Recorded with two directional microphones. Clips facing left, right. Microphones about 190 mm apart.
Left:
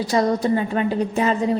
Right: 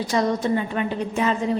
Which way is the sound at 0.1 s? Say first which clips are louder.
Left 3 dB; 35° left (ahead or behind).